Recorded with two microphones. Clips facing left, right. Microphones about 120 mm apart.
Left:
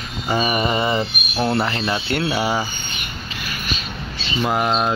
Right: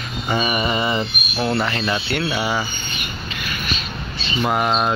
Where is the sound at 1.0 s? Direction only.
20° left (ahead or behind).